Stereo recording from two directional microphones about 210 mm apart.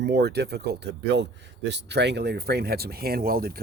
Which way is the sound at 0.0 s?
50° right (ahead or behind).